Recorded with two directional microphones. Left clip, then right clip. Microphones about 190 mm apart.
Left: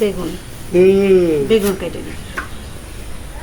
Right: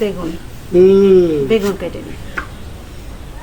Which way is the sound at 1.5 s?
5° left (ahead or behind).